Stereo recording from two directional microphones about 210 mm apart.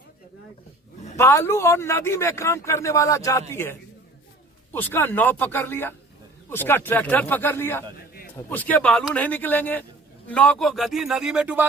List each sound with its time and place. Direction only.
1.1 s a man's voice: 10° left (ahead or behind)
7.9 s a sound: 45° left (ahead or behind)
8.4 s a man's voice: 10° left (ahead or behind); by 11.6 s 5° right (ahead or behind)